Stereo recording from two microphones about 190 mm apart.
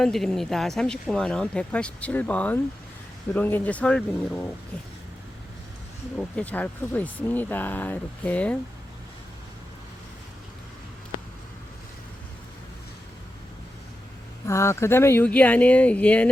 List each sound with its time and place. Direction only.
0.0 s speech: centre (ahead or behind)
6.1 s speech: 5° left (ahead or behind)
14.4 s speech: 15° left (ahead or behind)